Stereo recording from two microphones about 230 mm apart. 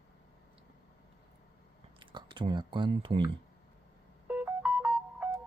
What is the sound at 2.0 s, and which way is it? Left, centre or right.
Speech, right.